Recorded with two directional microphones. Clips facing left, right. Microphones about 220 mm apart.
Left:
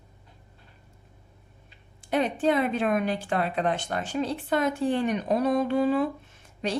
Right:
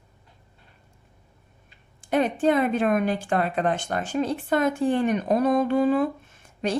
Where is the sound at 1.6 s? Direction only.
50° right (ahead or behind).